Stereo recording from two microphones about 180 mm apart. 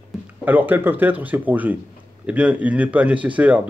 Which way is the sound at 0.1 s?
Centre (ahead or behind).